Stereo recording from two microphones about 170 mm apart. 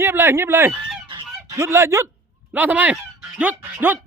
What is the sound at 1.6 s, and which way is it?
Speech, 15° right (ahead or behind).